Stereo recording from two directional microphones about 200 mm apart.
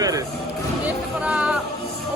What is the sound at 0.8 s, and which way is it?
Music, 5° right (ahead or behind).